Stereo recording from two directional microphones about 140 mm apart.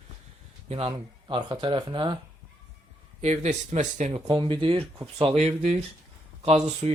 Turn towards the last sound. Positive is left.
turn(degrees=-50)  # may be behind; listen again after turning